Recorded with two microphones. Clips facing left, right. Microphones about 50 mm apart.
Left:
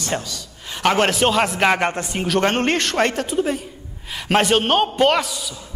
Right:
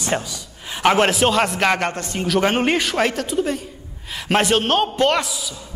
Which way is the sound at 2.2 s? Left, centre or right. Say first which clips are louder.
Right 1 dB; centre.